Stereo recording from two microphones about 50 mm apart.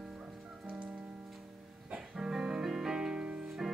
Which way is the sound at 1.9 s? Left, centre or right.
Centre.